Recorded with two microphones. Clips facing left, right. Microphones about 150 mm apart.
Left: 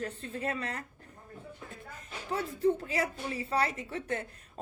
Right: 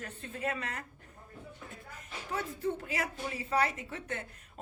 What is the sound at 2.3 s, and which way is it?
Speech, 30° left (ahead or behind).